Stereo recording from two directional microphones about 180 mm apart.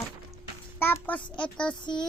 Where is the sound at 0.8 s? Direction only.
10° left (ahead or behind).